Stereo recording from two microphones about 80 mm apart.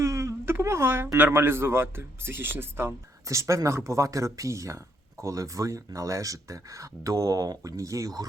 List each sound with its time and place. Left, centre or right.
0.0 s speech: right